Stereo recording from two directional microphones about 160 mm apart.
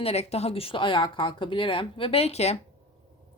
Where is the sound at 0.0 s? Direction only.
40° left (ahead or behind).